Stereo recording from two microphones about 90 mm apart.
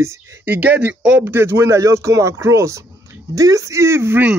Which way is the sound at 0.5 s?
15° right (ahead or behind).